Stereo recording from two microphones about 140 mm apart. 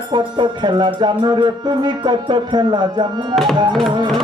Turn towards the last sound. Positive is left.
turn(degrees=0)  # may be behind; listen again after turning